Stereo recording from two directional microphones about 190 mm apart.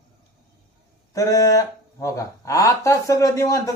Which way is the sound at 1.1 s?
15° left (ahead or behind).